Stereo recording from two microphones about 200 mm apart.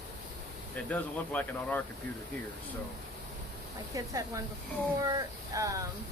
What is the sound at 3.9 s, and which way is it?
Speech, 15° right (ahead or behind).